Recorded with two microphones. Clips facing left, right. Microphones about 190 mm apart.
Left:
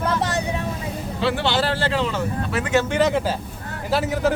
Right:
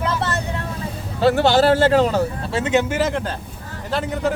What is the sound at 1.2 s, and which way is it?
Speech, 45° right (ahead or behind).